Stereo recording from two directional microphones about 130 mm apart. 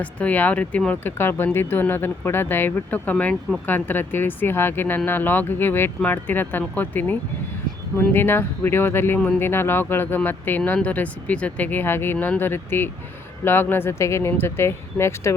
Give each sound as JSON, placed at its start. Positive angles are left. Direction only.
{"t": 0.0, "sound": "speech", "side_deg": 10}